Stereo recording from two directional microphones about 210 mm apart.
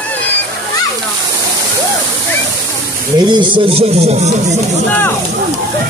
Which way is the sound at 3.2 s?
20° right (ahead or behind).